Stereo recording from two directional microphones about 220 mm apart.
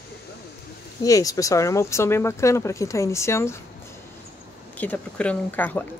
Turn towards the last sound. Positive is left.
turn(degrees=10)  # may be behind; listen again after turning